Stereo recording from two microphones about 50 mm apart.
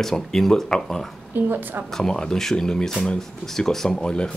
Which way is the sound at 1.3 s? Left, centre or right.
Right.